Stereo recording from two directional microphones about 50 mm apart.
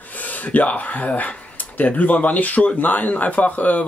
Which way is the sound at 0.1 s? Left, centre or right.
Left.